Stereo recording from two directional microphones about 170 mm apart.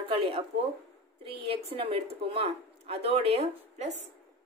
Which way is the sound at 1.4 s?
35° right (ahead or behind).